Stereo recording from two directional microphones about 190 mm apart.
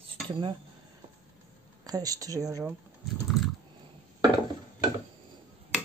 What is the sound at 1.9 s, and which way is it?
Speech, 20° right (ahead or behind).